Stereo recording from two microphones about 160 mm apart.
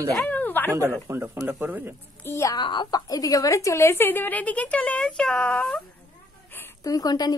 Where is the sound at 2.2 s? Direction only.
20° left (ahead or behind).